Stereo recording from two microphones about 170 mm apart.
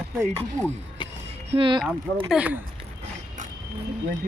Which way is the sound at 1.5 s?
30° right (ahead or behind).